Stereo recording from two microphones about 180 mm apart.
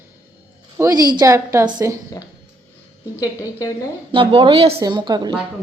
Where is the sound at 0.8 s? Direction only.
20° right (ahead or behind).